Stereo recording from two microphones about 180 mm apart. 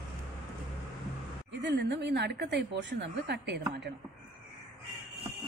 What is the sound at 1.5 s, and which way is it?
A woman's voice, 75° right (ahead or behind).